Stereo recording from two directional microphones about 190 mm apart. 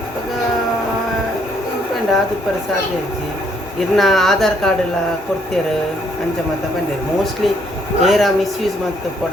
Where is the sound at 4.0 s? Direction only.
Centre (ahead or behind).